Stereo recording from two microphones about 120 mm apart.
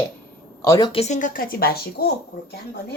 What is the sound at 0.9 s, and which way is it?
Speech, 70° left (ahead or behind).